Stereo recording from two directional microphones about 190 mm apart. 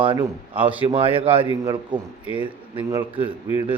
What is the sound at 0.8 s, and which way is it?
A man's voice, 30° right (ahead or behind).